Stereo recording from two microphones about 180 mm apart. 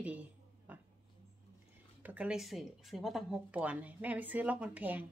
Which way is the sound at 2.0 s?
10° right (ahead or behind).